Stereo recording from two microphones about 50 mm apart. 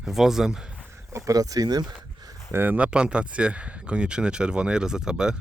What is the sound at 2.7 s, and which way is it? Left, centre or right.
Speech, right.